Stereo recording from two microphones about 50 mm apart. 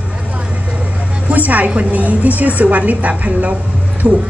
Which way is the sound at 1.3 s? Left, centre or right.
Right.